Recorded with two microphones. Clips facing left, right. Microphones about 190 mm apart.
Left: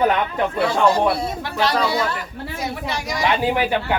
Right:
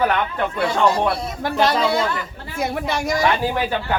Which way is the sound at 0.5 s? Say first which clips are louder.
Left 1 dB; 30° left (ahead or behind).